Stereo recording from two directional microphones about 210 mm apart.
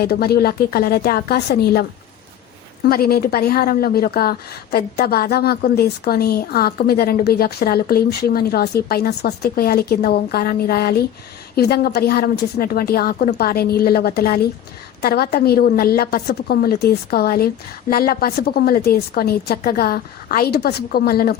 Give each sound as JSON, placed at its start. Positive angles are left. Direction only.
{"t": 0.0, "sound": "a woman's voice", "side_deg": 50}
{"t": 2.9, "sound": "a woman's voice", "side_deg": 45}